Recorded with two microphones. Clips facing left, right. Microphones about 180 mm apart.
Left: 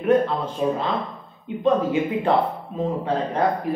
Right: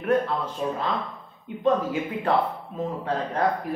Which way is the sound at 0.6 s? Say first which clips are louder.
Left 7 dB; 15° left (ahead or behind).